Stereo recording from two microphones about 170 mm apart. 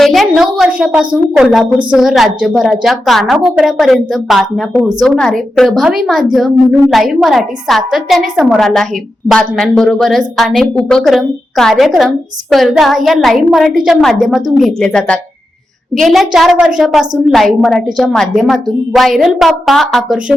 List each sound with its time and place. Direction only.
0.0 s a woman's voice: centre (ahead or behind)